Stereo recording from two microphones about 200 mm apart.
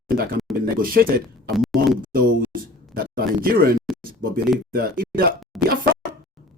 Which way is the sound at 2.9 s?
45° right (ahead or behind).